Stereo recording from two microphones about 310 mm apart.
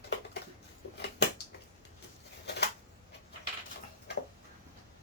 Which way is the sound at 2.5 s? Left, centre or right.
Left.